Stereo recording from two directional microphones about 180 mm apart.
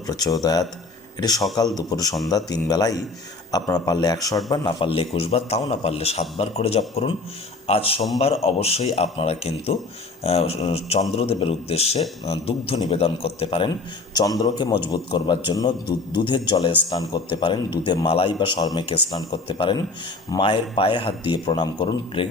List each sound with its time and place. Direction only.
0.1 s a man's voice: 20° left (ahead or behind)
14.1 s a man's voice: 20° left (ahead or behind)